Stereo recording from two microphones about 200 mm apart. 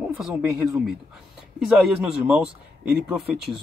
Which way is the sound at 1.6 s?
5° right (ahead or behind).